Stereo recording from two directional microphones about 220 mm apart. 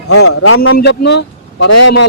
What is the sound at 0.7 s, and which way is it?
A man's voice, 45° left (ahead or behind).